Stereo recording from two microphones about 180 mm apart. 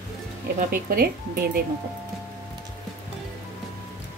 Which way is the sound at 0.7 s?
55° right (ahead or behind).